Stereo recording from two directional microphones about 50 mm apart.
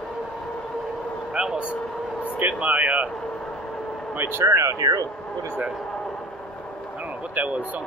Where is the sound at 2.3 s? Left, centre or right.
Right.